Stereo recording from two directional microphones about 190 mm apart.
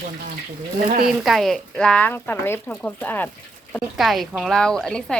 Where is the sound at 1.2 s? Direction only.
Centre (ahead or behind).